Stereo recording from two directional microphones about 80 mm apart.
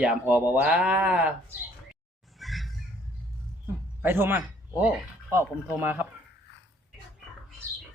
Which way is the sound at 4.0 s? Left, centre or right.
Right.